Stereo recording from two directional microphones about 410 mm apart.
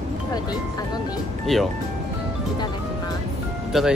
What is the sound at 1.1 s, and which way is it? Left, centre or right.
Speech, centre.